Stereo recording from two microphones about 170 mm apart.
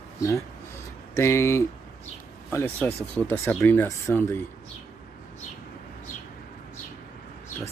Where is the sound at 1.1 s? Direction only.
15° left (ahead or behind).